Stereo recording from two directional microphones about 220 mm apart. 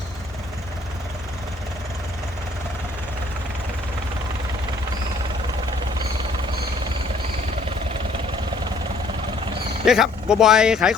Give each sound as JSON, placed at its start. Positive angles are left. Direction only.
{"t": 9.8, "sound": "speech", "side_deg": -5}